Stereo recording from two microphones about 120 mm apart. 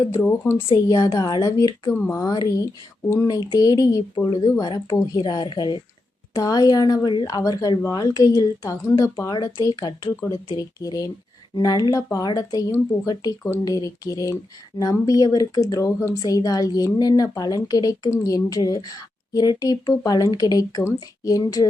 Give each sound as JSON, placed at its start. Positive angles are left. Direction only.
{"t": 0.1, "sound": "speech", "side_deg": 20}
{"t": 0.9, "sound": "speech", "side_deg": 30}